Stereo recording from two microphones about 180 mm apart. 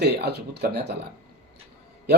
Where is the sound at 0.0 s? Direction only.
65° right (ahead or behind).